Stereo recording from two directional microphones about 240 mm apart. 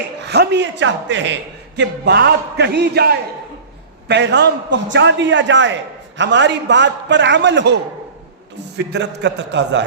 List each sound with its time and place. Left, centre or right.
0.3 s a man's voice: right
8.9 s a man's voice: right